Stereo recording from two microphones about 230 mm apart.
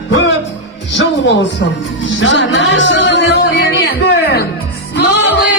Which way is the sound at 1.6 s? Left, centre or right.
Left.